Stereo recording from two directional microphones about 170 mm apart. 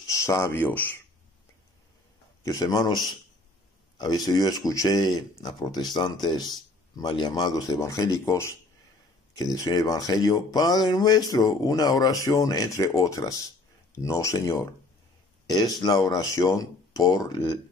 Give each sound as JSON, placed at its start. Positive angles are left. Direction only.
{"t": 0.1, "sound": "speech", "side_deg": 20}
{"t": 2.4, "sound": "speech", "side_deg": 20}